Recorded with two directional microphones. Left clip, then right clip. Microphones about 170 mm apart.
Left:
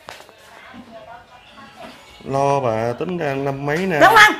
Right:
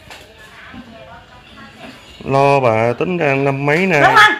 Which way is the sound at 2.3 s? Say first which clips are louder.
Right 6 dB; 10° right (ahead or behind).